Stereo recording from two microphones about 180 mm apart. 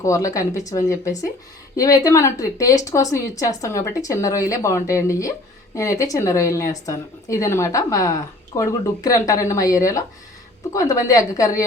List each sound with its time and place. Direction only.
0.0 s a woman's voice: 15° left (ahead or behind)